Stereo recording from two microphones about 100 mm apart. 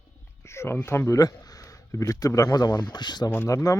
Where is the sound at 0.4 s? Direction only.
25° left (ahead or behind); by 3.2 s 45° left (ahead or behind).